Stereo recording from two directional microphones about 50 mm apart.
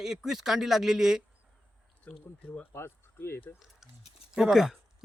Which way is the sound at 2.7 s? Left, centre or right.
Left.